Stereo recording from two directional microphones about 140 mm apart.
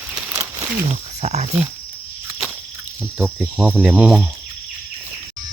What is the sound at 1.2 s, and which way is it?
Speech, 55° right (ahead or behind).